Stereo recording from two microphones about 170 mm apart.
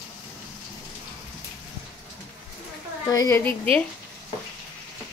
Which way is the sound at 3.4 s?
10° left (ahead or behind).